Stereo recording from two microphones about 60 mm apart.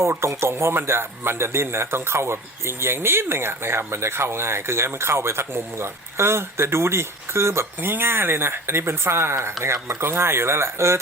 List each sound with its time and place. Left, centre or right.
0.0 s a man's voice: right